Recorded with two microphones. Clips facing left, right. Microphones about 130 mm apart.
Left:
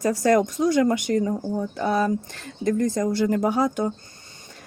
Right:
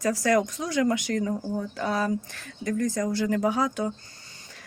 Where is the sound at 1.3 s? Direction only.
20° left (ahead or behind).